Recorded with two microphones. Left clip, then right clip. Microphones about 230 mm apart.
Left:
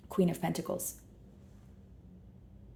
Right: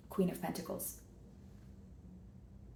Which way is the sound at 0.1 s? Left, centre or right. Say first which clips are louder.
Left 5 dB; left.